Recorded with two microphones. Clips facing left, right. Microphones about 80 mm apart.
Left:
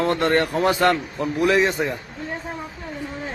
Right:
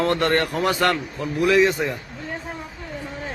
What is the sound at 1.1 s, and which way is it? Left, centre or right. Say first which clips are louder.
Speech: right 1 dB; left.